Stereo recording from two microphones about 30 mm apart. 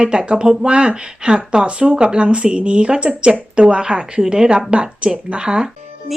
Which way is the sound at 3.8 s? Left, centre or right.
Right.